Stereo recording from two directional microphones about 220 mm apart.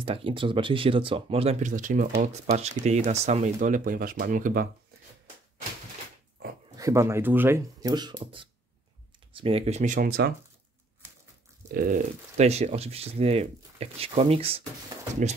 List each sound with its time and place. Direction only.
0.0 s speech: 25° right (ahead or behind)
6.8 s speech: 15° right (ahead or behind); by 10.3 s 45° right (ahead or behind)
11.7 s speech: 35° right (ahead or behind)